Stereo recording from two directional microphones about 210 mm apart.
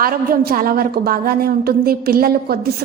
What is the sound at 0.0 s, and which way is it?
A woman's voice, 45° right (ahead or behind).